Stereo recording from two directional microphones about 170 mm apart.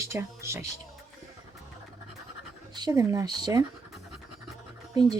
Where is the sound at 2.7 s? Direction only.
25° right (ahead or behind).